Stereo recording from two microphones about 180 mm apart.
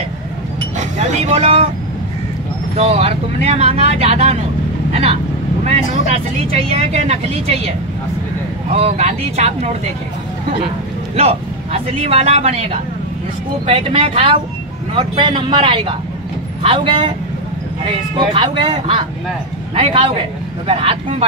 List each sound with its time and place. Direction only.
0.7 s speech: 40° right (ahead or behind)
2.7 s speech: 35° right (ahead or behind)
6.0 s speech: 35° right (ahead or behind)
8.7 s speech: 35° right (ahead or behind)
11.1 s speech: 35° right (ahead or behind)
18.3 s a man's voice: 30° right (ahead or behind)